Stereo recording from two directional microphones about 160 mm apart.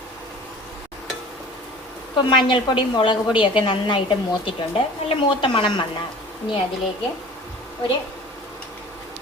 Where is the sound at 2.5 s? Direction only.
30° left (ahead or behind).